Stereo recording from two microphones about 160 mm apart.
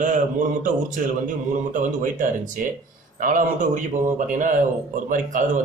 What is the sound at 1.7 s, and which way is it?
Speech, 55° right (ahead or behind).